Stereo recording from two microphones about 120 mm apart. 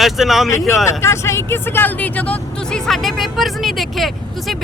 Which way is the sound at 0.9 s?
25° left (ahead or behind).